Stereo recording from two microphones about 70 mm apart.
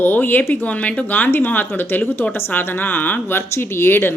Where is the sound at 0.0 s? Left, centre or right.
Left.